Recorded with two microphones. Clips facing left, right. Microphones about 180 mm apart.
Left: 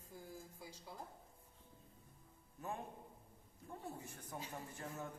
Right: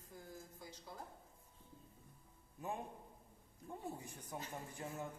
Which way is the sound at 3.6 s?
15° right (ahead or behind).